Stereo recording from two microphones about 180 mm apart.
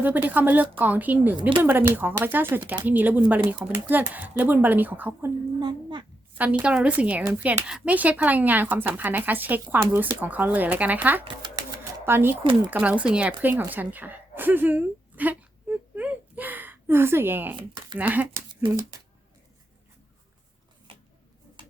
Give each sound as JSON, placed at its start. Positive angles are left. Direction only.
{"t": 0.0, "sound": "a woman's voice", "side_deg": -10}
{"t": 5.5, "sound": "a child's voice", "side_deg": -25}
{"t": 6.3, "sound": "a woman's voice", "side_deg": -10}
{"t": 12.4, "sound": "a child's voice", "side_deg": -30}
{"t": 12.7, "sound": "a woman's voice", "side_deg": -10}